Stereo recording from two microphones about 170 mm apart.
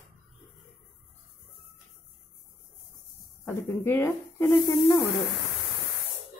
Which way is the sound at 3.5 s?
15° left (ahead or behind).